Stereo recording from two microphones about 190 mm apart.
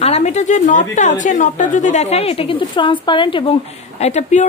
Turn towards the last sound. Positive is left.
turn(degrees=35)  # may be behind; listen again after turning